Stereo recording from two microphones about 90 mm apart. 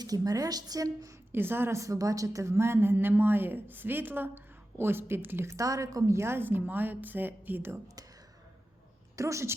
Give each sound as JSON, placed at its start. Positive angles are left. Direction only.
{"t": 0.0, "sound": "a woman's voice", "side_deg": -45}
{"t": 1.3, "sound": "a woman's voice", "side_deg": -25}
{"t": 5.5, "sound": "a woman's voice", "side_deg": -40}
{"t": 9.1, "sound": "a woman's voice", "side_deg": -35}